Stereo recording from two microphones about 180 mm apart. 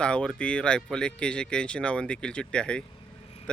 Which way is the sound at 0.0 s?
5° left (ahead or behind).